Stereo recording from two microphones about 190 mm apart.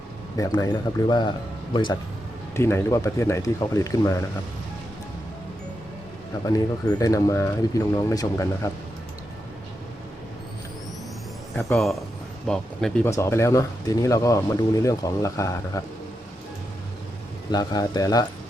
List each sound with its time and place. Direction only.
0.3 s speech: 20° left (ahead or behind)
2.6 s speech: 15° left (ahead or behind)
6.4 s speech: 20° left (ahead or behind)
11.7 s speech: centre (ahead or behind)
13.1 s speech: 15° left (ahead or behind)
17.5 s speech: 20° left (ahead or behind)